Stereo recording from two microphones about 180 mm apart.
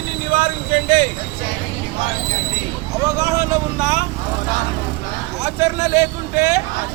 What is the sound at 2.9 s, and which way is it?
Vehicle, 20° right (ahead or behind).